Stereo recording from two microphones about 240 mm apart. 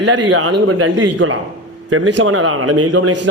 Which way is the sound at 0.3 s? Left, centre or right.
Right.